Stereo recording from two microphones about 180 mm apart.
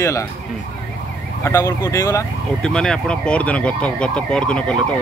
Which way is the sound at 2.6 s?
5° left (ahead or behind).